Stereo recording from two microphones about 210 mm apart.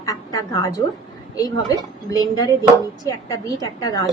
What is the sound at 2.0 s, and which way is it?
Speech, 15° left (ahead or behind).